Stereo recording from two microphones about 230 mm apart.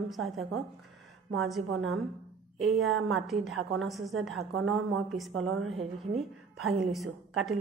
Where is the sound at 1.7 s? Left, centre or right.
Right.